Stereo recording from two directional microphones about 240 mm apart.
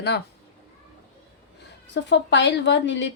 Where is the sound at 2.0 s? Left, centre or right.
Left.